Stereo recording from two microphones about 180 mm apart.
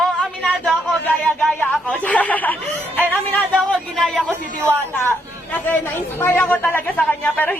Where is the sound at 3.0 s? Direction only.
5° right (ahead or behind).